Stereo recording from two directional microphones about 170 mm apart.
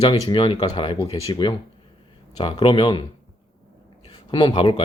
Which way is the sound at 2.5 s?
30° left (ahead or behind).